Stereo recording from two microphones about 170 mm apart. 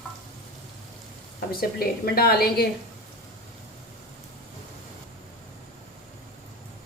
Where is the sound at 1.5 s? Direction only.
65° left (ahead or behind).